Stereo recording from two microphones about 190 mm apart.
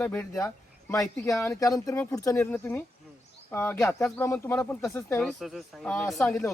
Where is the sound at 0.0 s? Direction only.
10° left (ahead or behind).